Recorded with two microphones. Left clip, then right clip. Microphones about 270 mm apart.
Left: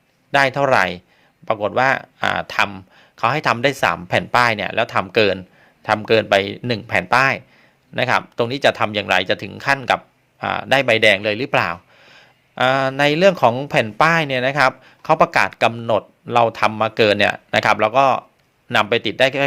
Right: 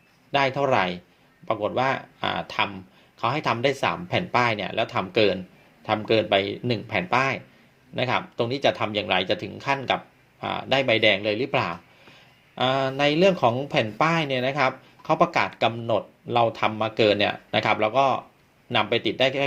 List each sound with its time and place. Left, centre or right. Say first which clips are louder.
0.3 s speech: left 6 dB; left